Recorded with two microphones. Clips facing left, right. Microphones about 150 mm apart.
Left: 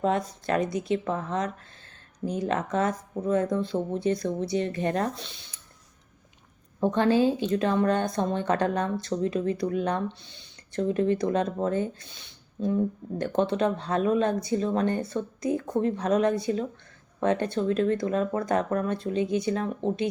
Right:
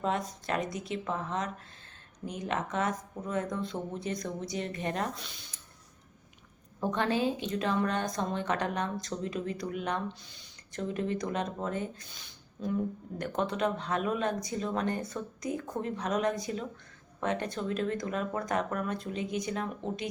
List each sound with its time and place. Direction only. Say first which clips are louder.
0.0 s speech: left 6 dB; 35° left (ahead or behind)
6.9 s speech: left 7 dB; 30° left (ahead or behind)